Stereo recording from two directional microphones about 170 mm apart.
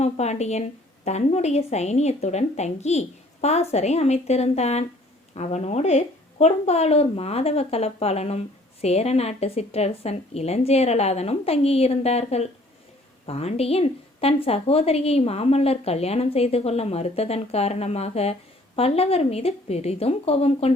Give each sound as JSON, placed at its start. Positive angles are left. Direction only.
{"t": 0.0, "sound": "a woman's voice", "side_deg": 40}